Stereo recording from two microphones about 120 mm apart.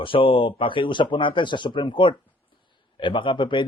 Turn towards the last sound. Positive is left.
turn(degrees=40)  # may be behind; listen again after turning